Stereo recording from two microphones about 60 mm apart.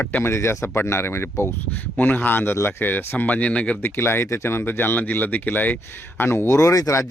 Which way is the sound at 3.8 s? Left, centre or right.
Left.